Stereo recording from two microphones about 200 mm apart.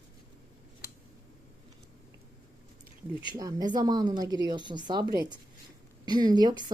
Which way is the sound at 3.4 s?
20° right (ahead or behind).